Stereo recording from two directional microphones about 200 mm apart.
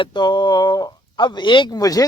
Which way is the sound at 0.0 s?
20° left (ahead or behind).